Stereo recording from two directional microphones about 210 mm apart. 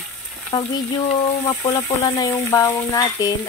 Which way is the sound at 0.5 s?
20° left (ahead or behind).